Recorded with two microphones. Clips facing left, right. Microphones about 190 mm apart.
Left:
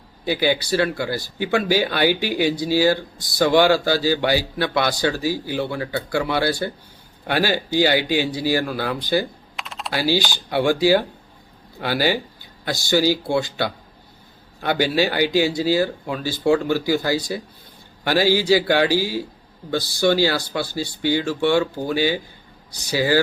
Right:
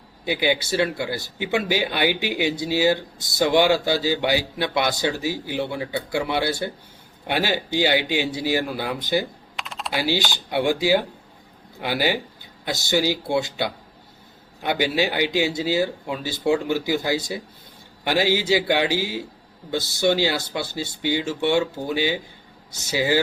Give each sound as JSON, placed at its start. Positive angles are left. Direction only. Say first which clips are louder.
{"t": 0.3, "sound": "speech", "louder": "left 2 dB", "side_deg": -20}
{"t": 9.6, "sound": "typing", "louder": "even", "side_deg": 0}
{"t": 9.9, "sound": "speech", "louder": "left 3 dB", "side_deg": -20}